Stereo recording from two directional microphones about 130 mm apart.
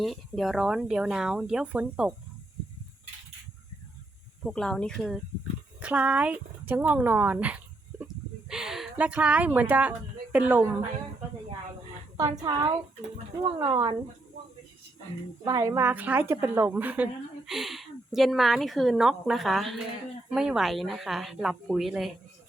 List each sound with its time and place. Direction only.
0.0 s speech: centre (ahead or behind)
4.4 s speech: 5° left (ahead or behind)
5.8 s a woman's voice: 10° right (ahead or behind)
12.1 s a woman's voice: 25° right (ahead or behind)
15.4 s a woman's voice: 25° right (ahead or behind)
15.9 s a woman's voice: 15° right (ahead or behind)